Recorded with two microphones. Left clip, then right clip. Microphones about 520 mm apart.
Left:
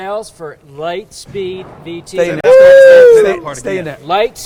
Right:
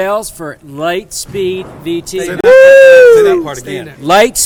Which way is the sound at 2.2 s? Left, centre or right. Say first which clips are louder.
Right 1 dB; left.